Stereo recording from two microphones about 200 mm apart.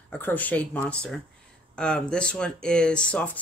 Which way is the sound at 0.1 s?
10° left (ahead or behind).